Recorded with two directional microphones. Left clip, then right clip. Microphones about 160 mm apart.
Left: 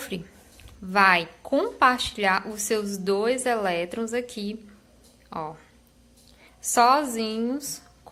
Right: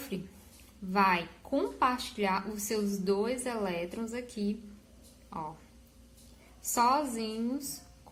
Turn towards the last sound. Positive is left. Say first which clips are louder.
# left 7 dB
turn(degrees=25)  # may be behind; listen again after turning